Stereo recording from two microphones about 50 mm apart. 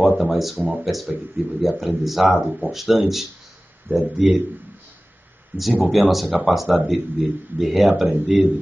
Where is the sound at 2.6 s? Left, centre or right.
Right.